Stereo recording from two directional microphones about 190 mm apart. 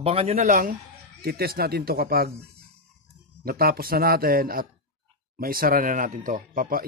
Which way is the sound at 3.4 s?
50° right (ahead or behind).